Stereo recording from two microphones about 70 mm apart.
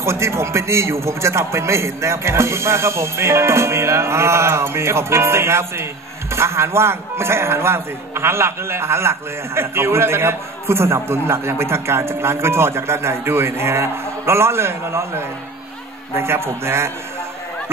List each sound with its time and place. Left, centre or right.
0.0 s a man's voice: right